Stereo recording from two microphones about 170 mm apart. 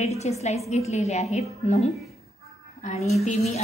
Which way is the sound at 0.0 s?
40° left (ahead or behind).